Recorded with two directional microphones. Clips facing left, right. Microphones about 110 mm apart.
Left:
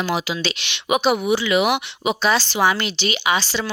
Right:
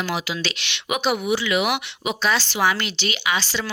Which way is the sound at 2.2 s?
15° left (ahead or behind).